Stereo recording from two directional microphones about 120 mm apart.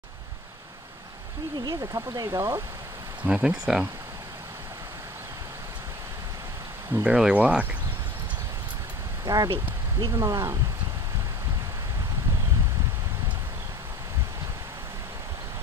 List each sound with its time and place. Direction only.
1.6 s speech: 30° right (ahead or behind)
3.3 s speech: 10° right (ahead or behind)
6.9 s speech: 10° right (ahead or behind)
9.2 s speech: 30° right (ahead or behind)